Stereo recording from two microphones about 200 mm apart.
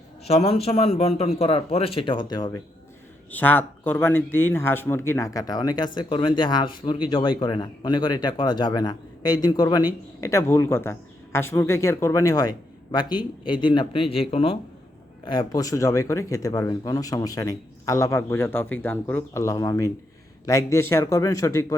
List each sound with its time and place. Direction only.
0.3 s speech: 30° left (ahead or behind)
3.3 s speech: 10° left (ahead or behind)